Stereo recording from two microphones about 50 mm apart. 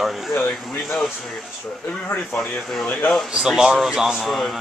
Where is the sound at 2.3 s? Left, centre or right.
Left.